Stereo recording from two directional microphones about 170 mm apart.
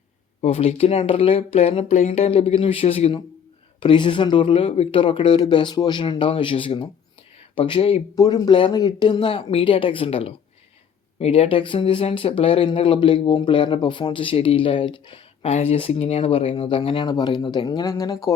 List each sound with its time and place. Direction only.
0.4 s speech: 40° left (ahead or behind)
8.1 s speech: 20° left (ahead or behind)